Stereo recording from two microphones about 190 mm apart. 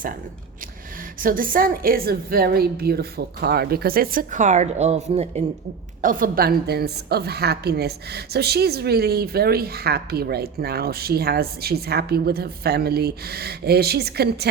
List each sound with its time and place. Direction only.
1.2 s a woman's voice: 45° right (ahead or behind)
6.0 s a woman's voice: 45° right (ahead or behind)